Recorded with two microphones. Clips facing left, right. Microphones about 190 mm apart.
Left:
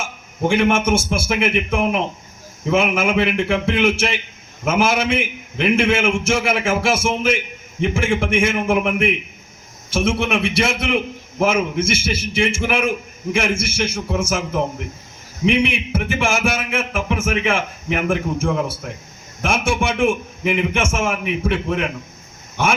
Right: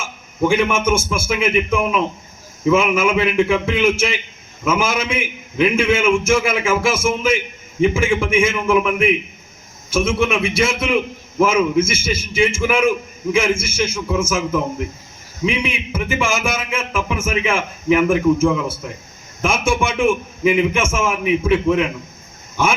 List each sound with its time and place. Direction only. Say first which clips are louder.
0.5 s a man's voice: left 2 dB; 65° left (ahead or behind)
9.9 s a man's voice: right 2 dB; 65° left (ahead or behind)